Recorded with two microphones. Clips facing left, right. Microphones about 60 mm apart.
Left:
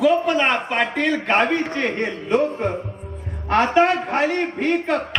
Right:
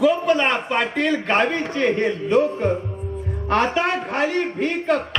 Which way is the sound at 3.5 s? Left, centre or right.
Left.